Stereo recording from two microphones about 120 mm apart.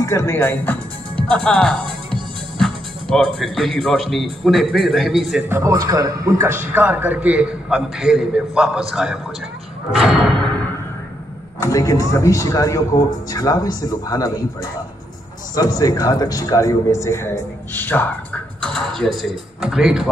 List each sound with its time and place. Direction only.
0.0 s a man's voice: 25° left (ahead or behind)
1.3 s speech: 5° left (ahead or behind)
5.5 s a man's voice: 25° right (ahead or behind); by 9.2 s 5° right (ahead or behind)
9.9 s music: centre (ahead or behind)
11.6 s a man's voice: 30° left (ahead or behind); by 20.1 s 5° right (ahead or behind)